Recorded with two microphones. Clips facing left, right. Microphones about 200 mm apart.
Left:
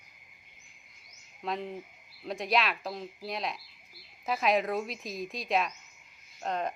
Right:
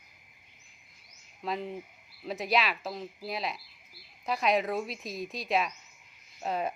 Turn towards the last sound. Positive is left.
turn(degrees=-5)  # may be behind; listen again after turning